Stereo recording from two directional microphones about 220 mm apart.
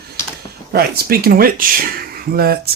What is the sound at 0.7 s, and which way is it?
Speech, 45° right (ahead or behind).